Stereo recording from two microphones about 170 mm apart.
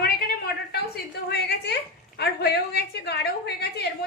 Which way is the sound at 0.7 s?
70° left (ahead or behind).